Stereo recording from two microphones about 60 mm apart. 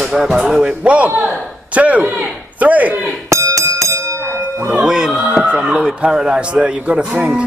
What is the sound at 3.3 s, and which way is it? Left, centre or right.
Bell, right.